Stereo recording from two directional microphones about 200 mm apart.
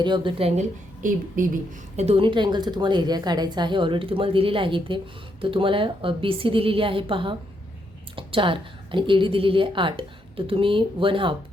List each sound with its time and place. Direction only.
0.0 s a woman's voice: 25° right (ahead or behind)
1.0 s a woman's voice: 40° right (ahead or behind)
2.0 s a woman's voice: 30° right (ahead or behind)